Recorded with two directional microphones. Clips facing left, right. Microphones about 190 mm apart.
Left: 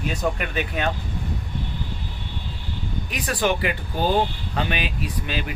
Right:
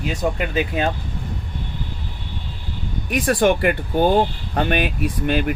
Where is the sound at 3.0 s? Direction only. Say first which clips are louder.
Right 7 dB; 55° right (ahead or behind).